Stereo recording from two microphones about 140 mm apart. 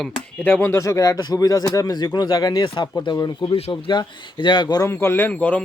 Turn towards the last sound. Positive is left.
turn(degrees=10)  # may be behind; listen again after turning